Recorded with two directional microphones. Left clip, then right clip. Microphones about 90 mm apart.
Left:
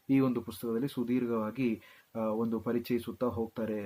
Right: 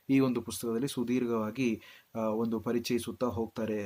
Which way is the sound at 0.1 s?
20° right (ahead or behind).